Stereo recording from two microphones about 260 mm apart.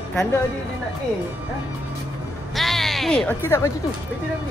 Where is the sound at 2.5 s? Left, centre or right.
Centre.